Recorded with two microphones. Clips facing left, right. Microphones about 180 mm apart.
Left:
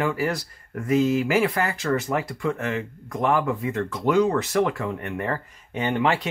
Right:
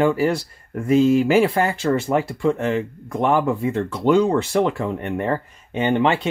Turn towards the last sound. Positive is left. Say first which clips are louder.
# right 4 dB
turn(degrees=-25)  # may be behind; listen again after turning